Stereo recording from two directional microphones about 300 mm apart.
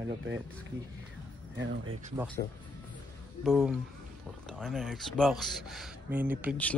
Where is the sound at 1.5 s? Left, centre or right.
Right.